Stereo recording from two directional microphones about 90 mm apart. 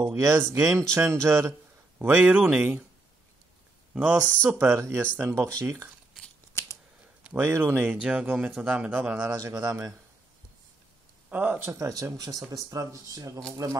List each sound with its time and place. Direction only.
0.4 s speech: 30° right (ahead or behind)
2.0 s speech: 15° right (ahead or behind)
3.9 s speech: 15° right (ahead or behind)
4.6 s speech: 30° right (ahead or behind)
6.6 s scissors: 30° left (ahead or behind)
7.4 s speech: 30° right (ahead or behind)
7.8 s speech: 10° right (ahead or behind)
9.7 s speech: 40° right (ahead or behind)
11.2 s speech: 20° right (ahead or behind)
11.7 s speech: 40° right (ahead or behind)